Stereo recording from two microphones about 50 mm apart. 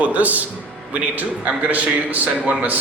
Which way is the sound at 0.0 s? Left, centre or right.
Right.